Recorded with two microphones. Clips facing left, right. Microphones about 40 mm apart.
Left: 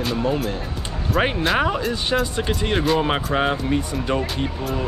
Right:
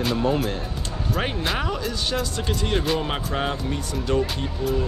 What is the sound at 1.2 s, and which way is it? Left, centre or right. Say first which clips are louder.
Speech: left 7 dB; left.